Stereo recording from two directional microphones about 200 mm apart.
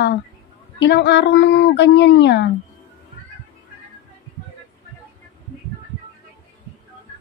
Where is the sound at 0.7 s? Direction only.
60° left (ahead or behind).